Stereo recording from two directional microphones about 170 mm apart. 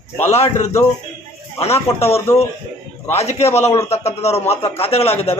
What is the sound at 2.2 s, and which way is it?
Speech, 15° left (ahead or behind).